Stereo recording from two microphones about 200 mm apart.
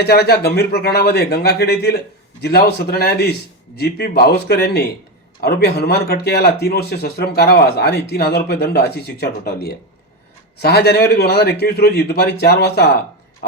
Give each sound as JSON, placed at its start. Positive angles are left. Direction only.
{"t": 0.0, "sound": "speech", "side_deg": 55}